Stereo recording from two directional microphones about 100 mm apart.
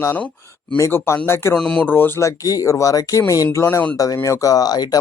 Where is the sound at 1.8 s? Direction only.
20° left (ahead or behind).